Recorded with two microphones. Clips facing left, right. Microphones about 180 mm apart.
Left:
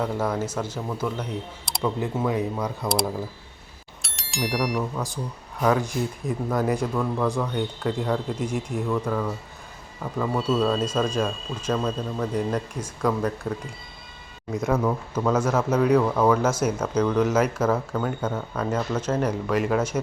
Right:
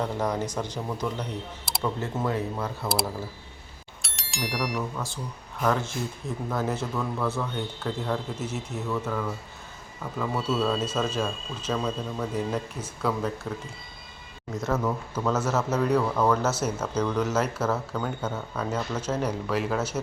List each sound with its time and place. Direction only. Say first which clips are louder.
0.0 s speech: left 2 dB; 5° left (ahead or behind)
2.0 s speech: left 4 dB; 15° left (ahead or behind)
4.0 s bicycle bell: left 4 dB; centre (ahead or behind)
4.8 s speech: left 4 dB; 15° left (ahead or behind)
7.5 s speech: left 5 dB; centre (ahead or behind)
10.8 s speech: left 3 dB; 5° right (ahead or behind)
13.5 s speech: left 4 dB; 10° left (ahead or behind)
14.7 s speech: left 3 dB; 10° left (ahead or behind)
19.5 s speech: left 4 dB; 5° right (ahead or behind)